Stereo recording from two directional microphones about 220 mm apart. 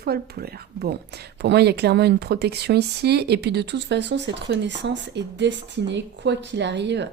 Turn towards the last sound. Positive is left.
turn(degrees=-50)  # may be behind; listen again after turning